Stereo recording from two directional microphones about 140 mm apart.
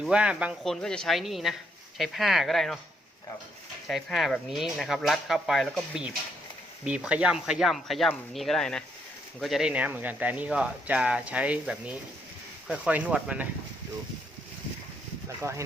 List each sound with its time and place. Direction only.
0.0 s speech: 5° right (ahead or behind)
0.7 s speech: 5° left (ahead or behind)
3.8 s speech: centre (ahead or behind)
15.4 s speech: 20° right (ahead or behind)